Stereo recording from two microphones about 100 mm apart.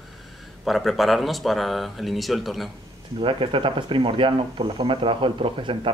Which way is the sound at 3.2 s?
60° right (ahead or behind).